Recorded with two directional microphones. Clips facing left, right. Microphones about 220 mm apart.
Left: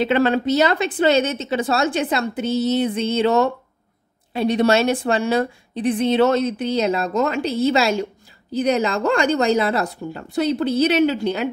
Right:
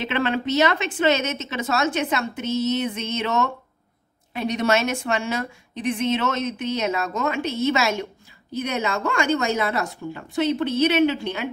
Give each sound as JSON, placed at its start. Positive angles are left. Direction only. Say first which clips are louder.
{"t": 0.1, "sound": "a woman's voice", "louder": "left 2 dB", "side_deg": 40}